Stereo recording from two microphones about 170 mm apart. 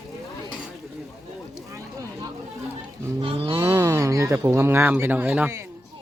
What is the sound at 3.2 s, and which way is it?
Livestock, 30° right (ahead or behind).